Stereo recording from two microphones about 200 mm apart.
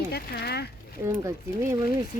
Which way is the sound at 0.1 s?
50° left (ahead or behind).